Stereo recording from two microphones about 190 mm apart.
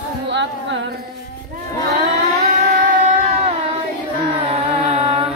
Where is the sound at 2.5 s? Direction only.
40° right (ahead or behind).